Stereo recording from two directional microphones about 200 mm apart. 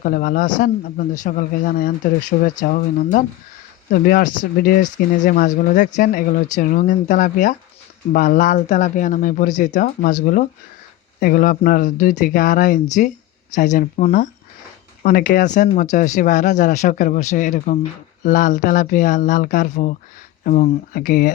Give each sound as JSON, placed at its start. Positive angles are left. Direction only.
{"t": 0.0, "sound": "speech", "side_deg": 45}
{"t": 11.2, "sound": "speech", "side_deg": 45}